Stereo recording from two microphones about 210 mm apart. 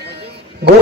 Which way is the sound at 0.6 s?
55° right (ahead or behind).